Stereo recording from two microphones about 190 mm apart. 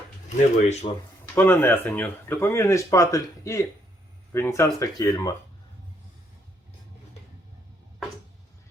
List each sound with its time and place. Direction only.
0.3 s speech: 35° left (ahead or behind)
1.4 s speech: 10° left (ahead or behind)